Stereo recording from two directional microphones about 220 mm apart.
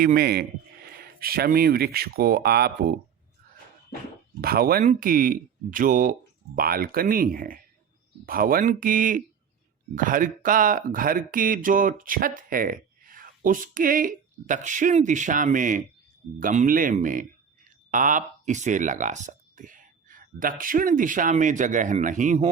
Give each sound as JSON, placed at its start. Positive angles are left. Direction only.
{"t": 0.0, "sound": "speech", "side_deg": -45}
{"t": 4.4, "sound": "speech", "side_deg": -45}